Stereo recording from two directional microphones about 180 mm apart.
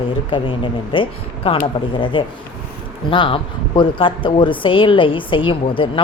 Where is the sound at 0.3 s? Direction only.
30° left (ahead or behind).